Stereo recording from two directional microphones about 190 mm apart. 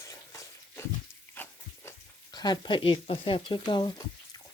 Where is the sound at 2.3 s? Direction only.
20° left (ahead or behind).